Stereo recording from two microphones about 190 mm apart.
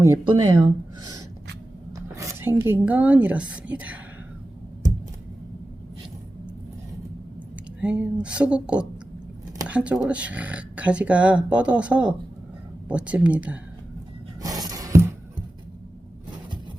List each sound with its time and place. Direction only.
0.0 s speech: 20° right (ahead or behind)
7.8 s speech: 5° right (ahead or behind)
14.4 s music: 20° right (ahead or behind)